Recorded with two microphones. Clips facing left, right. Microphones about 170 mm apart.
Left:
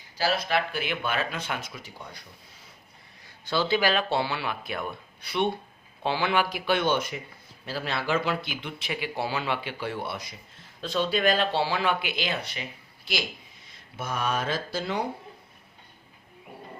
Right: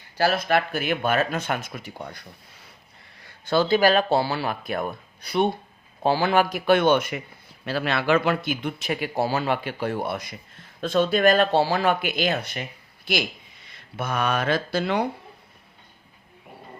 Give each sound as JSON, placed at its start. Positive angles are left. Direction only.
{"t": 0.2, "sound": "speech", "side_deg": -55}
{"t": 13.7, "sound": "speech", "side_deg": -65}